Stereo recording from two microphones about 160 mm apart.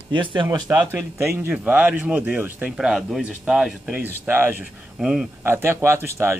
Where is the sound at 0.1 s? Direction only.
30° right (ahead or behind).